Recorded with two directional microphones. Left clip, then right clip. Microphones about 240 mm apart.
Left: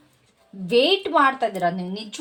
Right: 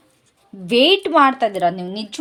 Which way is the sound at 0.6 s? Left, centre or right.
Right.